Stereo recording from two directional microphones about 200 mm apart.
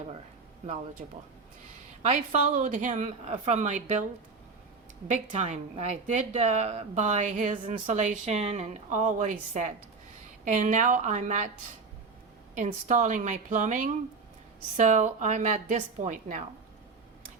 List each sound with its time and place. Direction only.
2.6 s a woman's voice: 40° right (ahead or behind)
5.1 s a woman's voice: 35° right (ahead or behind)
12.5 s a woman's voice: 40° right (ahead or behind)